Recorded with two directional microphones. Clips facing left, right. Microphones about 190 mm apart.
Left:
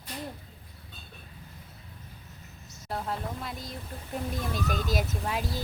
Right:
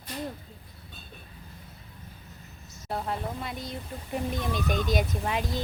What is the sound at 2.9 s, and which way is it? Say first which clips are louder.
Speech: right 2 dB; centre (ahead or behind).